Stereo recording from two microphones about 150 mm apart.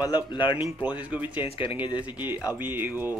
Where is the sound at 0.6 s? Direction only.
10° right (ahead or behind).